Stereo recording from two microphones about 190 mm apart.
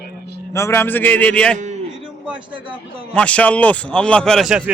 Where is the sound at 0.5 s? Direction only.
15° left (ahead or behind).